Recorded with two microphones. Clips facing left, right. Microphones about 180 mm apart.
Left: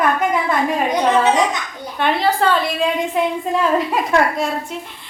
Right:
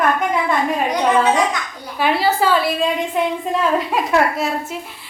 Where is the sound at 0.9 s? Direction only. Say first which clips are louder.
Left 1 dB; 20° left (ahead or behind).